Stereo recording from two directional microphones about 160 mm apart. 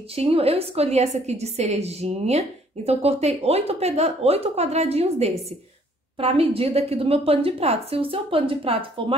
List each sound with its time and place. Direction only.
0.1 s a woman's voice: 40° right (ahead or behind)